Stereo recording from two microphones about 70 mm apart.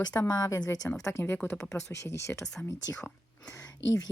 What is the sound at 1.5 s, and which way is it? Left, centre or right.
Speech, left.